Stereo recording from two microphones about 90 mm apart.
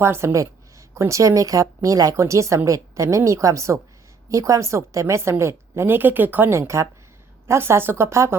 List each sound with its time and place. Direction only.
0.0 s a woman's voice: 30° right (ahead or behind)
6.6 s a woman's voice: 35° right (ahead or behind)